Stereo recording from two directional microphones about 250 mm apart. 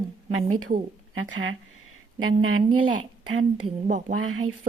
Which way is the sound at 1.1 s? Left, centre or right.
Right.